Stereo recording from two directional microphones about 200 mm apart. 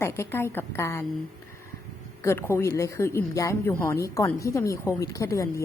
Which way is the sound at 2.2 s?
10° left (ahead or behind).